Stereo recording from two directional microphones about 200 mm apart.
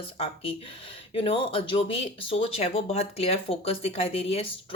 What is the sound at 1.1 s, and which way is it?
Speech, 25° left (ahead or behind).